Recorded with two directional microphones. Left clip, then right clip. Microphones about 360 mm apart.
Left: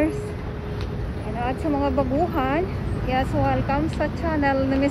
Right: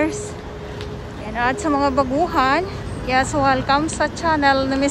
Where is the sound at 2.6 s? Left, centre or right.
Right.